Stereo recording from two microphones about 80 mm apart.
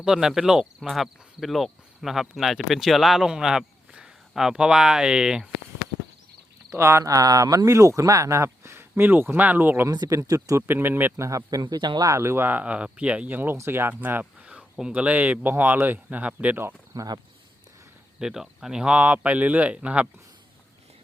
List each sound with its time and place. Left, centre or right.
0.0 s speech: centre
6.7 s speech: right
10.1 s speech: right
10.7 s speech: right
11.2 s speech: right
11.6 s speech: right
12.0 s speech: right
14.5 s speech: centre
16.9 s speech: right
18.2 s speech: centre